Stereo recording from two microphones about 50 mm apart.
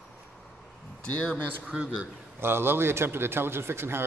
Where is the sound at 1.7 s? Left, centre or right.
Centre.